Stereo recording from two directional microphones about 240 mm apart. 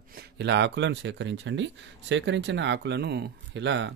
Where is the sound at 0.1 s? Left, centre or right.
Right.